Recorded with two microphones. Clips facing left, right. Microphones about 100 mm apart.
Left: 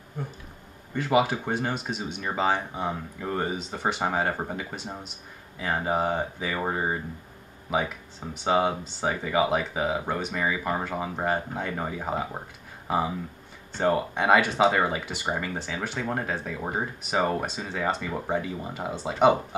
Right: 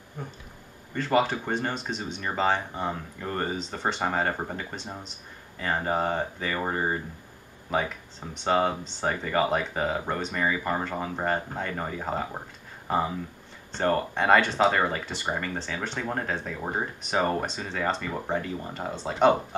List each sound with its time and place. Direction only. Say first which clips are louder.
0.9 s speech: left 1 dB; 10° left (ahead or behind)